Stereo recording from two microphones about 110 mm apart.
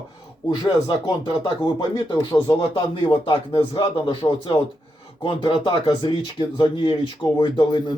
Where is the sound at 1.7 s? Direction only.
40° left (ahead or behind).